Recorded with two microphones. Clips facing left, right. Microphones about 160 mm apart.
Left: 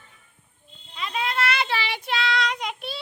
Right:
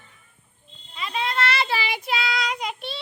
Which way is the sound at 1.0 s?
Centre (ahead or behind).